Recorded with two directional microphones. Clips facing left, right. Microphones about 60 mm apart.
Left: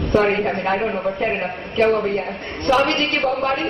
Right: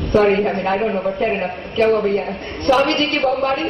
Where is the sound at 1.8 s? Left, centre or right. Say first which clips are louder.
Right 2 dB; centre.